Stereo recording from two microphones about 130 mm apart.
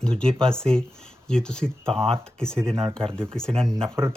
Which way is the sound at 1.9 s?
50° right (ahead or behind).